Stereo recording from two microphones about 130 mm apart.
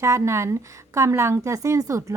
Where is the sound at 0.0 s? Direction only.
20° right (ahead or behind).